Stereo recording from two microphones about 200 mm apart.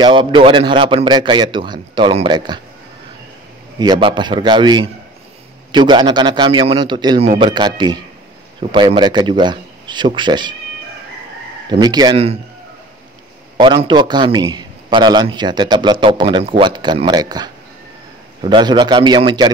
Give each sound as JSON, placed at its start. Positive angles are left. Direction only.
{"t": 0.0, "sound": "a man's voice", "side_deg": -25}
{"t": 3.8, "sound": "a man's voice", "side_deg": -25}
{"t": 11.7, "sound": "a man's voice", "side_deg": -20}
{"t": 13.6, "sound": "a man's voice", "side_deg": -25}